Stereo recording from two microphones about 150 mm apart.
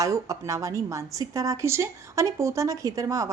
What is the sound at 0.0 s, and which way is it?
A woman's voice, 20° right (ahead or behind).